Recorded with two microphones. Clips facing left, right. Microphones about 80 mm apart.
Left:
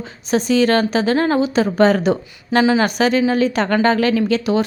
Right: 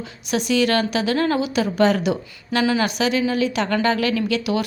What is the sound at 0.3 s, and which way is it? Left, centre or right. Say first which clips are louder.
Speech: left 4 dB; left.